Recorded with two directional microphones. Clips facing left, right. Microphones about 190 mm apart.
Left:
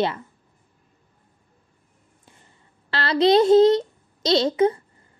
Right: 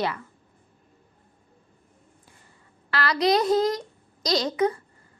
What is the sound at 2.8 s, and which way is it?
A child's voice, 30° left (ahead or behind).